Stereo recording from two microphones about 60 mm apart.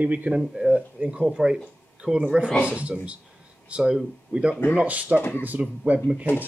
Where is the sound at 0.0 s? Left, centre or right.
Right.